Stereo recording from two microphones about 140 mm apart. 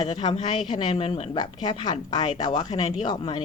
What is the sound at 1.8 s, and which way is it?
Speech, 30° left (ahead or behind).